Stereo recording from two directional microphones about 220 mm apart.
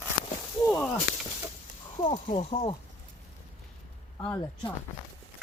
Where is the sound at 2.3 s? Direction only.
25° left (ahead or behind).